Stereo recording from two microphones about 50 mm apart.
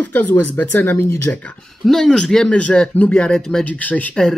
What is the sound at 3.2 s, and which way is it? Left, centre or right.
Speech, centre.